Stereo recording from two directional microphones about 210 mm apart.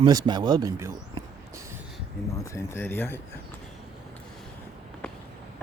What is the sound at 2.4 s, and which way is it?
Speech, 10° left (ahead or behind).